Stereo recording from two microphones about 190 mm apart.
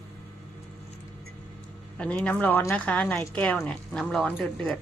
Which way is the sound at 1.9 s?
5° left (ahead or behind).